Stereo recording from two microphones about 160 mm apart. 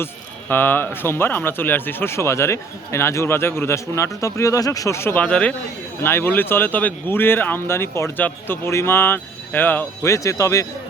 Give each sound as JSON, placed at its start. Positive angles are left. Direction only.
{"t": 0.0, "sound": "speech", "side_deg": 10}